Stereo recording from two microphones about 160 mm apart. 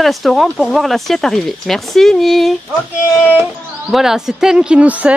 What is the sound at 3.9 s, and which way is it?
Speech, 5° right (ahead or behind).